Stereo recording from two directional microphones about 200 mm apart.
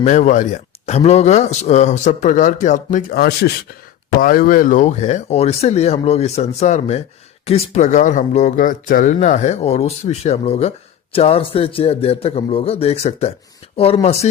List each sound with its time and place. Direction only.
0.0 s speech: 35° left (ahead or behind)